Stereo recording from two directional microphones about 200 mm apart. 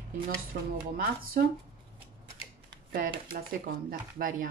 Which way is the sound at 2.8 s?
45° right (ahead or behind).